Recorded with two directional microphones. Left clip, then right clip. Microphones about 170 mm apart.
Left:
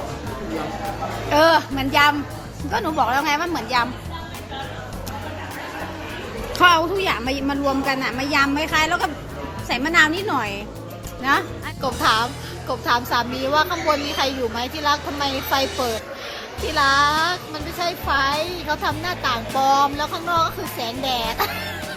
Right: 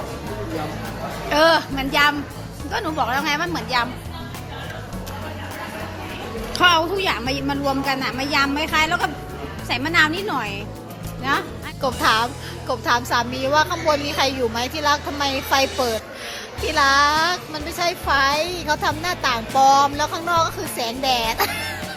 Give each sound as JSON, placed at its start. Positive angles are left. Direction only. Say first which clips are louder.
{"t": 1.3, "sound": "a woman's voice", "louder": "left 1 dB", "side_deg": 5}
{"t": 6.5, "sound": "a woman's voice", "louder": "left 1 dB", "side_deg": 10}
{"t": 11.8, "sound": "speech", "louder": "right 1 dB", "side_deg": -5}